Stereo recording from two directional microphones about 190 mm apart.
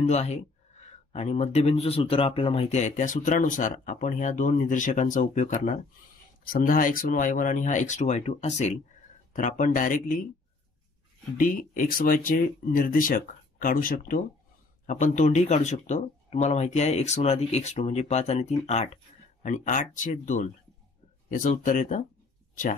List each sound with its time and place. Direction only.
0.0 s speech: 35° left (ahead or behind)
11.3 s speech: 45° left (ahead or behind)